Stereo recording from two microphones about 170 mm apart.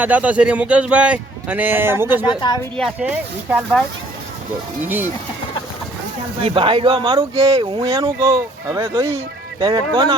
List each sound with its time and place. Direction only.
0.0 s a man's voice: 10° right (ahead or behind)
6.4 s speech: 30° right (ahead or behind)